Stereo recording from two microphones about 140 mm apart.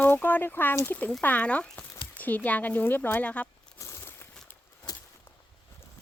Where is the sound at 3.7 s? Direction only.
20° left (ahead or behind).